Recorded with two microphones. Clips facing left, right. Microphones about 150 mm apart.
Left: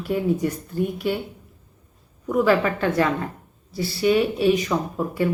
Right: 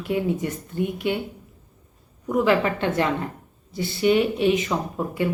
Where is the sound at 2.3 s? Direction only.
20° right (ahead or behind).